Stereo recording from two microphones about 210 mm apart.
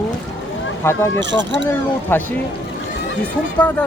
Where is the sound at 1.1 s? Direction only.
60° right (ahead or behind).